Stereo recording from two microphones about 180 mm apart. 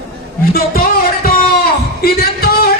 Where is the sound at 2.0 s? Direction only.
55° left (ahead or behind).